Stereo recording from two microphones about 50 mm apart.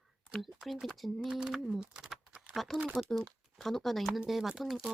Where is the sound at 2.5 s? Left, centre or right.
Centre.